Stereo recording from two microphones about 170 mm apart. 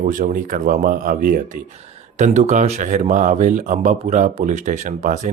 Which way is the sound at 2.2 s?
45° right (ahead or behind).